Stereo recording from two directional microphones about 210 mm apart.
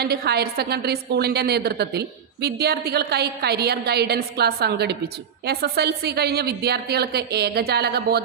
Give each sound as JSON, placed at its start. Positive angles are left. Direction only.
{"t": 0.0, "sound": "a woman's voice", "side_deg": -50}